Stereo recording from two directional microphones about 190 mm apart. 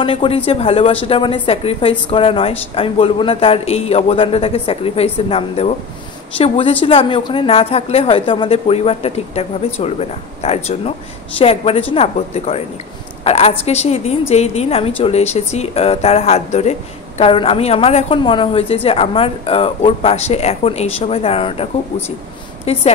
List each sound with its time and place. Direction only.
0.0 s a woman's voice: 25° left (ahead or behind)
22.7 s a woman's voice: 35° left (ahead or behind)